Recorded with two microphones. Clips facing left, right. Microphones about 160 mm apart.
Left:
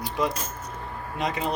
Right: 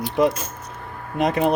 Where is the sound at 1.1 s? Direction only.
55° right (ahead or behind).